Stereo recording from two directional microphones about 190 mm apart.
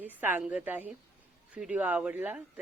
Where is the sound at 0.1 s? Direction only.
10° right (ahead or behind).